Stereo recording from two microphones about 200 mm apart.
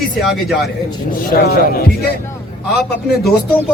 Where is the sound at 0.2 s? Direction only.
Centre (ahead or behind).